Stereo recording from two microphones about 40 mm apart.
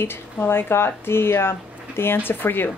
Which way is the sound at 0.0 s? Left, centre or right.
Left.